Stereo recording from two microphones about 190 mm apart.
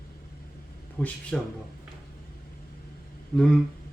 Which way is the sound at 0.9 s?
5° left (ahead or behind).